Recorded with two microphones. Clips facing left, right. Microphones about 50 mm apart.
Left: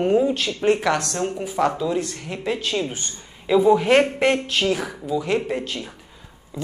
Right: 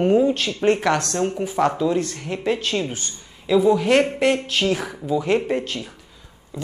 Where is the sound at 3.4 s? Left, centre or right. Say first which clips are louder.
Left 1 dB; centre.